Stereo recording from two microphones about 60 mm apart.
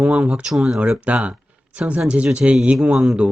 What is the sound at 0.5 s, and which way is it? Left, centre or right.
Speech, centre.